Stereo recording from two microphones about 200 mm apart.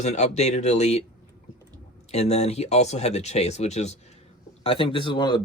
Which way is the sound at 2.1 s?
30° left (ahead or behind).